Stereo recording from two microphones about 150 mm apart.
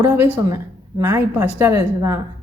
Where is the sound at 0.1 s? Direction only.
10° right (ahead or behind).